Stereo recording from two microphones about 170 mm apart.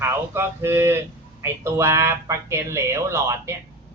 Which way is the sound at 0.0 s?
15° right (ahead or behind).